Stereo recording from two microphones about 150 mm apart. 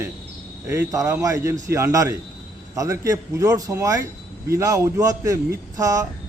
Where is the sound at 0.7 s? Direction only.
20° right (ahead or behind).